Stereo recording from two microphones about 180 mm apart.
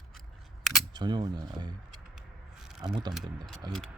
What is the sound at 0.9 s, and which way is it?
Speech, 25° right (ahead or behind).